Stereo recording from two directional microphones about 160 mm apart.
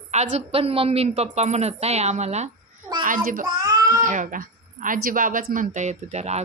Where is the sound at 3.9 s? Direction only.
55° right (ahead or behind).